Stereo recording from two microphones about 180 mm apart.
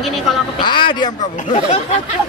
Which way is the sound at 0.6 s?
25° left (ahead or behind).